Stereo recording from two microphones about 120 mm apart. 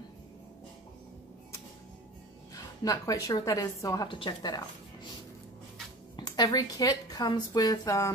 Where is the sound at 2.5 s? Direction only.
30° left (ahead or behind).